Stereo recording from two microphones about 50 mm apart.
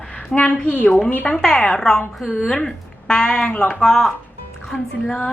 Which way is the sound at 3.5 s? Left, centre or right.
Left.